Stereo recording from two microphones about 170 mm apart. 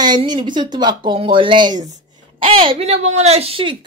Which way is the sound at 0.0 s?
25° right (ahead or behind).